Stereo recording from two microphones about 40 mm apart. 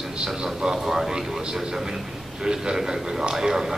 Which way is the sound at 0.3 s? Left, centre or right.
Centre.